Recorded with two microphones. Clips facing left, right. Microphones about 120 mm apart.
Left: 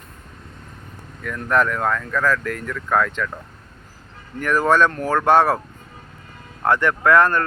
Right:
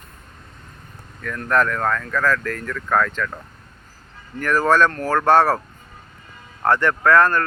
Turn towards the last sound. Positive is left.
turn(degrees=20)  # may be behind; listen again after turning